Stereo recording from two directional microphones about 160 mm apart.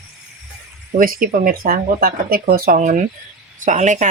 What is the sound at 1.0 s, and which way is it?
Speech, 60° right (ahead or behind).